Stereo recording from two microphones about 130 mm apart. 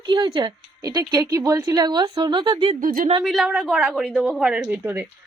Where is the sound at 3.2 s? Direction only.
Centre (ahead or behind).